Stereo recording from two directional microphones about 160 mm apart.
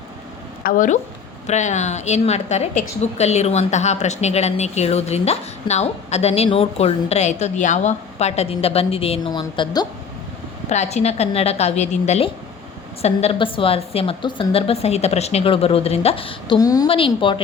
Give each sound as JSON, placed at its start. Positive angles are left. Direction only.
{"t": 0.6, "sound": "a woman's voice", "side_deg": 55}
{"t": 10.7, "sound": "a woman's voice", "side_deg": 45}